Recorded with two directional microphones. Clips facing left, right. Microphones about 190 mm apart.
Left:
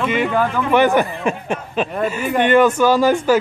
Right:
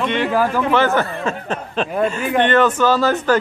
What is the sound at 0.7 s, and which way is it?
Speech, 15° left (ahead or behind).